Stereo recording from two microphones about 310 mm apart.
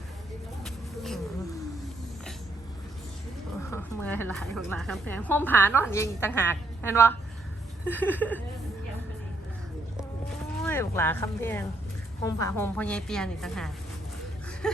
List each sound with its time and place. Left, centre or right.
0.6 s a sound: centre
3.7 s a woman's voice: centre
10.6 s a woman's voice: centre